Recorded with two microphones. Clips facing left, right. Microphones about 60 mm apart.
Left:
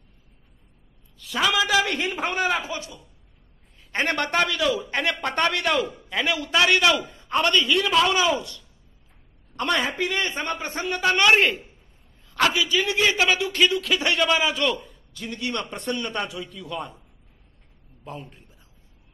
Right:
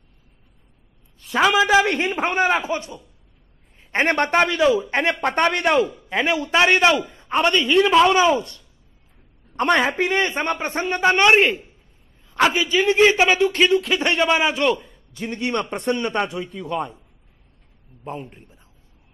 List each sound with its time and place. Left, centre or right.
1.2 s a man's voice: right
3.9 s a man's voice: right
12.5 s a man's voice: right